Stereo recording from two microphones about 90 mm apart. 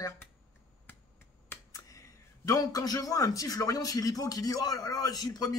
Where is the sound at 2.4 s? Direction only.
40° left (ahead or behind).